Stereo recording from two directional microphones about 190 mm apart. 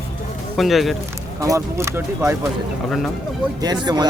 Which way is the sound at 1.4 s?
15° right (ahead or behind).